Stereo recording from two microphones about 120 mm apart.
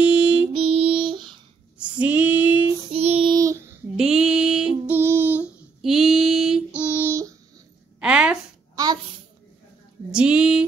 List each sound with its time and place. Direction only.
0.0 s music: 10° right (ahead or behind)
0.5 s child singing: 50° right (ahead or behind)
1.8 s female singing: 10° right (ahead or behind)
2.9 s child singing: 55° right (ahead or behind)
3.3 s child singing: 30° right (ahead or behind)
3.9 s child singing: 5° right (ahead or behind)
5.8 s female singing: 5° right (ahead or behind)
6.9 s a sound: 20° right (ahead or behind)
8.0 s a sound: 10° right (ahead or behind)
10.1 s a sound: 10° right (ahead or behind)